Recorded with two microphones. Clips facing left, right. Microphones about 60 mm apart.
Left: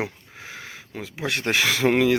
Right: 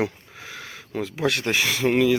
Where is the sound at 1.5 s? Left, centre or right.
Left.